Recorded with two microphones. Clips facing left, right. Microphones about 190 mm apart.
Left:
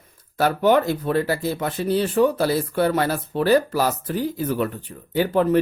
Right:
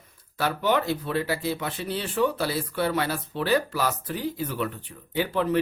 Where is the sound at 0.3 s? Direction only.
45° left (ahead or behind).